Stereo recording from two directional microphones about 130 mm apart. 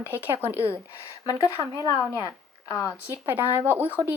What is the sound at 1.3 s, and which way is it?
Speech, 25° left (ahead or behind).